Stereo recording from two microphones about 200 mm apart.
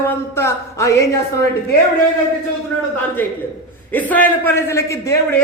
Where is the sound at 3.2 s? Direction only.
10° left (ahead or behind).